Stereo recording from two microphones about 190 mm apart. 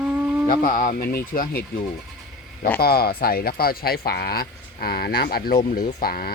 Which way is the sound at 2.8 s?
55° left (ahead or behind).